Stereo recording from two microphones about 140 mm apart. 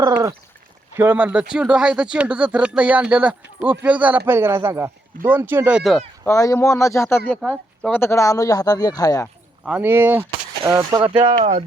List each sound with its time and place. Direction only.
0.1 s a sound: 20° right (ahead or behind)
0.9 s speech: 15° right (ahead or behind)
6.2 s speech: 25° left (ahead or behind)
9.6 s speech: 10° right (ahead or behind)
11.2 s speech: 45° right (ahead or behind)